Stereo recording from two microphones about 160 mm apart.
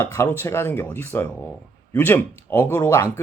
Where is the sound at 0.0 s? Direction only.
15° left (ahead or behind).